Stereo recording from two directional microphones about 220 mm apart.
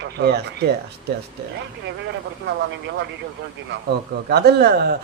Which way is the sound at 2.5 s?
50° right (ahead or behind).